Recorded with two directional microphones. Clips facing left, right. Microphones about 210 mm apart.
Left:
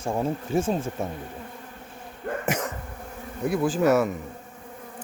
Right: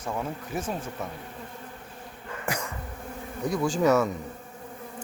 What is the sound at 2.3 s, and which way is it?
Throat clearing, 55° left (ahead or behind).